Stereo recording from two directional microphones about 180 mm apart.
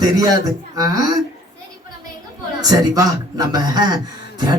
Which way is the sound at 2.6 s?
20° right (ahead or behind).